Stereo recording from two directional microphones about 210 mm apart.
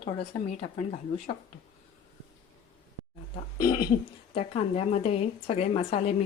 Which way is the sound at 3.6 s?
20° left (ahead or behind).